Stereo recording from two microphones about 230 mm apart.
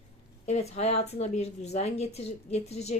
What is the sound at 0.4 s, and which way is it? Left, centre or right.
A woman's voice, left.